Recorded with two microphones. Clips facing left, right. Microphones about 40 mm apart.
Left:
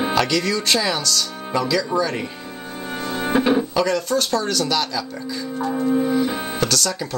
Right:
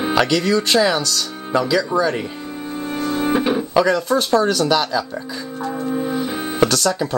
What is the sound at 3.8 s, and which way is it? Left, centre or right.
Speech, centre.